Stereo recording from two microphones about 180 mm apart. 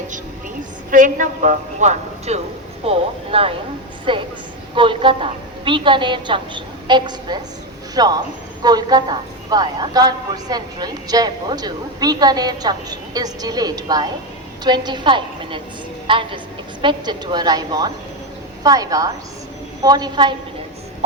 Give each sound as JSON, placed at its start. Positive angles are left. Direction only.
{"t": 0.9, "sound": "a woman's voice", "side_deg": -45}